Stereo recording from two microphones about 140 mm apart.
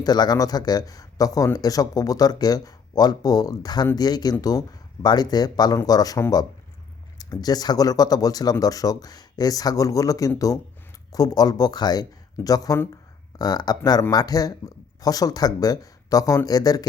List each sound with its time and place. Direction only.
0.0 s speech: 30° left (ahead or behind)